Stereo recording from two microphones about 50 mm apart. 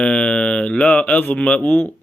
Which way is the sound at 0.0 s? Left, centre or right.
Centre.